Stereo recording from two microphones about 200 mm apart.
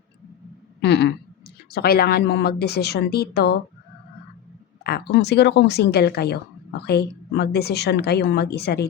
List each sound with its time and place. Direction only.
0.8 s speech: 55° left (ahead or behind)
4.8 s speech: 55° left (ahead or behind)